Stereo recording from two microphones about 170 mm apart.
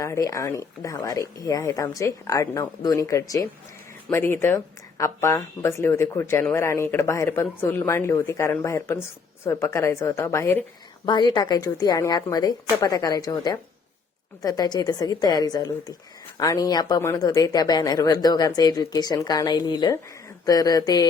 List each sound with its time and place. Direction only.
0.0 s speech: 20° left (ahead or behind)